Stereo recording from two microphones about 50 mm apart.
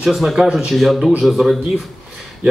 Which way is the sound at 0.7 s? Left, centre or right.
Centre.